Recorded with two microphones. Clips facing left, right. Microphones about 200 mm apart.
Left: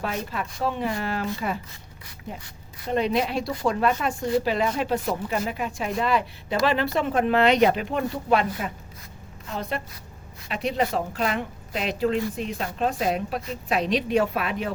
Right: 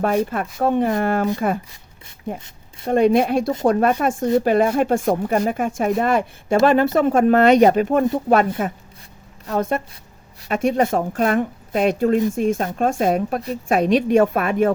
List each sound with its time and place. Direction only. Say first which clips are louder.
0.3 s a woman's voice: right 7 dB; 50° right (ahead or behind)
2.9 s a woman's voice: right 8 dB; 50° right (ahead or behind)